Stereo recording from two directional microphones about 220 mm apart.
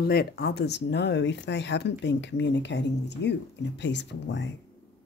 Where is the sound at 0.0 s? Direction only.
45° left (ahead or behind).